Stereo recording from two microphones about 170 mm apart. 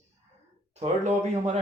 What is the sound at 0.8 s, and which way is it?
Speech, 40° right (ahead or behind).